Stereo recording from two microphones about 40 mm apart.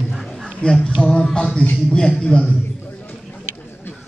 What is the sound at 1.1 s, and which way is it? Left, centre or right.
Music, left.